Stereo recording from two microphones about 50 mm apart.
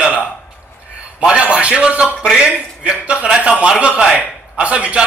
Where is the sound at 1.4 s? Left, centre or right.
Right.